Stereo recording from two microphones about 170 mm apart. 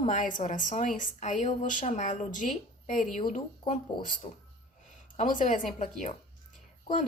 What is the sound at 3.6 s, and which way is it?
Speech, 30° left (ahead or behind).